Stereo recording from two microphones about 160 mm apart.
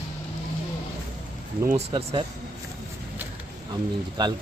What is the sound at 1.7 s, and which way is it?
Speech, 35° right (ahead or behind).